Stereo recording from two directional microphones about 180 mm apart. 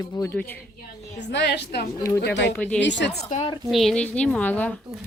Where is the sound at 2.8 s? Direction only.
80° left.